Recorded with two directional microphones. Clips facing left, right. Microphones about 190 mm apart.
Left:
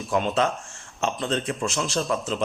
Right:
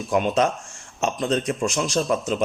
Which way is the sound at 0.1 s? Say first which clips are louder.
Right 3 dB; 20° right (ahead or behind).